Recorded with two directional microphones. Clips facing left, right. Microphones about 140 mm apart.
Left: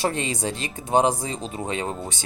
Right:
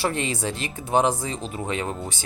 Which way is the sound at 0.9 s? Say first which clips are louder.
Left 1 dB; 15° left (ahead or behind).